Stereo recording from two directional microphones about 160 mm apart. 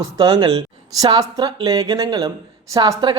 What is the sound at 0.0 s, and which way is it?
A man's voice, 25° right (ahead or behind).